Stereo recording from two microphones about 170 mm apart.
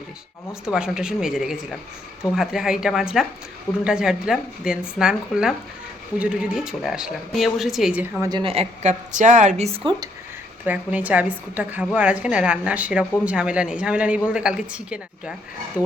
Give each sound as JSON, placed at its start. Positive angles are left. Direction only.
{"t": 0.6, "sound": "speech", "side_deg": -5}
{"t": 8.2, "sound": "a woman's voice", "side_deg": -25}
{"t": 10.7, "sound": "a woman's voice", "side_deg": -10}